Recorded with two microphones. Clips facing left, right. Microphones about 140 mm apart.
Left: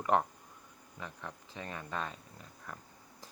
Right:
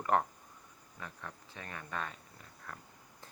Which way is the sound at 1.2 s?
25° left (ahead or behind).